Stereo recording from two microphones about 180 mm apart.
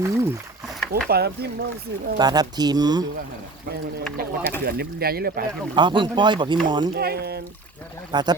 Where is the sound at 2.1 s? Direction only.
20° right (ahead or behind).